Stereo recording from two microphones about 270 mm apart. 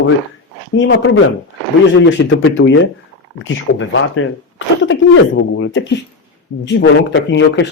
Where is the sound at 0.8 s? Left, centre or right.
Left.